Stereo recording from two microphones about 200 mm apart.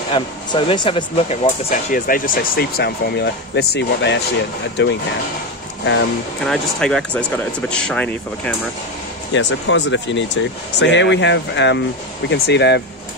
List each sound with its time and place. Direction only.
0.1 s speech: 25° left (ahead or behind); by 4.9 s 60° left (ahead or behind)
6.4 s speech: centre (ahead or behind)
9.3 s speech: 65° left (ahead or behind)